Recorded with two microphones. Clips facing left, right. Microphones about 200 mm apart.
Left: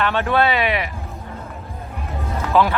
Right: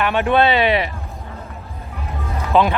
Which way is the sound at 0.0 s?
15° right (ahead or behind).